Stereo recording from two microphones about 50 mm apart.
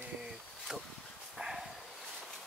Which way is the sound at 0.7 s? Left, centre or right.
Centre.